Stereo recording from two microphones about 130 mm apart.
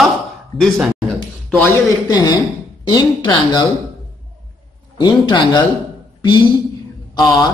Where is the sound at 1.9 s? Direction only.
30° left (ahead or behind).